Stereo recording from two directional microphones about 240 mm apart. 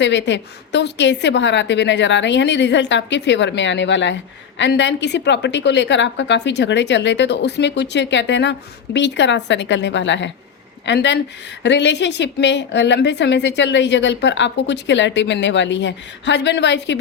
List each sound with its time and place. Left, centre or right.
0.0 s a woman's voice: left